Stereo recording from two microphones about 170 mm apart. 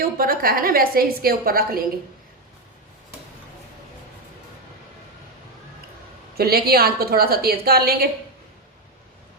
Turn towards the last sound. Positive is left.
turn(degrees=-65)  # may be behind; listen again after turning